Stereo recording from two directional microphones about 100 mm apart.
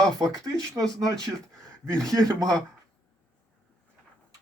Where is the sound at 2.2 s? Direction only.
40° right (ahead or behind).